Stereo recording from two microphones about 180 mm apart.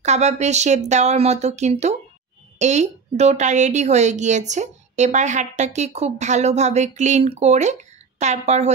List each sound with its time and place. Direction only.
0.0 s a woman's voice: 40° right (ahead or behind)